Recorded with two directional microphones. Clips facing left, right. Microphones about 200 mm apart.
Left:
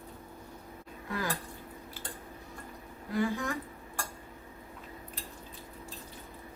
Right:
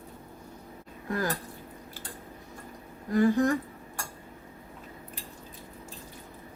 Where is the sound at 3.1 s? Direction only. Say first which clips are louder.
Right 8 dB; 45° right (ahead or behind).